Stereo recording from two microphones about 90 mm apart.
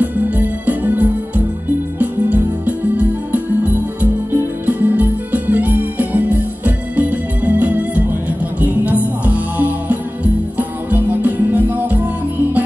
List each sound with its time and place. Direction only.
0.0 s music: 20° right (ahead or behind)